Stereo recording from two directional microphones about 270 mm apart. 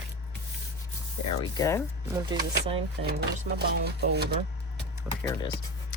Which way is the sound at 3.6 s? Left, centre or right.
Right.